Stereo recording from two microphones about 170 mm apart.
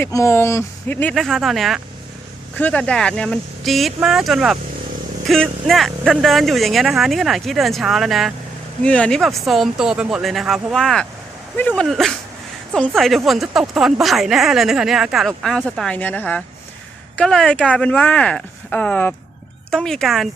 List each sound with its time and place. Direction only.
0.0 s speech: 15° left (ahead or behind)
1.1 s a woman's voice: centre (ahead or behind)